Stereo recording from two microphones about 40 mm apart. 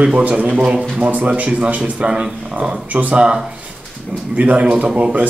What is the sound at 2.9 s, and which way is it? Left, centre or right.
Speech, right.